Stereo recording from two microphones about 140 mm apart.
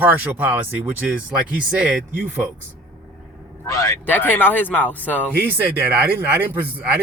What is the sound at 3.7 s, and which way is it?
A man's voice, 25° left (ahead or behind).